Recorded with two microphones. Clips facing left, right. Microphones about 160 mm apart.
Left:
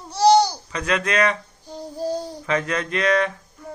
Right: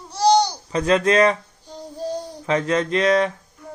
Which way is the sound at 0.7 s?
35° right (ahead or behind).